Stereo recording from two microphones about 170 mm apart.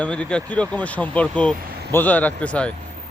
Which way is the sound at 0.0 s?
5° left (ahead or behind).